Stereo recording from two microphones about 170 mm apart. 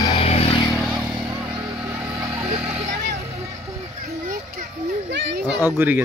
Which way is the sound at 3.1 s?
15° right (ahead or behind).